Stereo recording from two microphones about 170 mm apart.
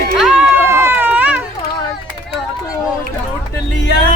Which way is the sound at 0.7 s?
15° right (ahead or behind).